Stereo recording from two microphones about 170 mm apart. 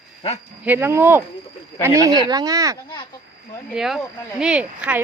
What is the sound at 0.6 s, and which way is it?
A woman's voice, 10° right (ahead or behind).